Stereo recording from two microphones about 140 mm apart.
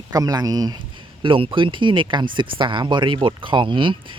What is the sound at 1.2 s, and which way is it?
Speech, 40° right (ahead or behind).